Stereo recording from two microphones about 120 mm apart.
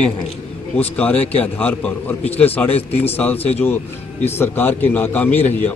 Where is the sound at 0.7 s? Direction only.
10° left (ahead or behind).